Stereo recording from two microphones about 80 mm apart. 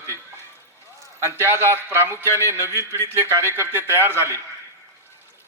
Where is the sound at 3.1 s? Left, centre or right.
Right.